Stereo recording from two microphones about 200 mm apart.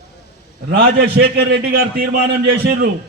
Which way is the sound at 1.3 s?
55° right (ahead or behind).